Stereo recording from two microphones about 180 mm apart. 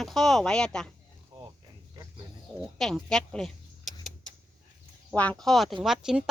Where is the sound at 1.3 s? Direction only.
25° right (ahead or behind).